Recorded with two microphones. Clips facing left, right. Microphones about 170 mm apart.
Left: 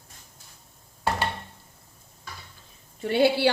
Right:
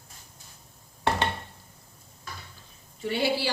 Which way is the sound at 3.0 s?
60° left (ahead or behind).